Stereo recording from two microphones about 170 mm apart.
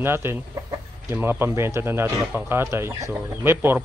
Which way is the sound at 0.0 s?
15° right (ahead or behind).